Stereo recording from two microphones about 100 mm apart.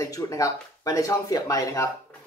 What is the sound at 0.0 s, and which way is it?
A man's voice, 35° left (ahead or behind).